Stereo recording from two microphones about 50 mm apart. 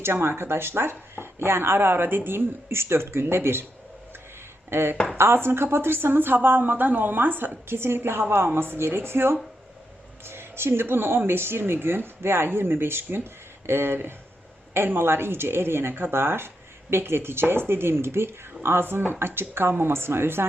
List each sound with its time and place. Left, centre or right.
0.0 s speech: right
4.7 s speech: right